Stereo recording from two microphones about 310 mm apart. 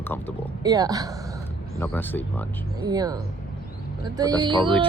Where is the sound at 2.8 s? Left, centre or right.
Centre.